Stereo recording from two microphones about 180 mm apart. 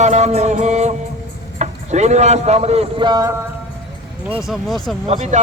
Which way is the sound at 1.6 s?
40° right (ahead or behind).